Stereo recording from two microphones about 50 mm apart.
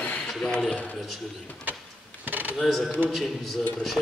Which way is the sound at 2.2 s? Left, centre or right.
Right.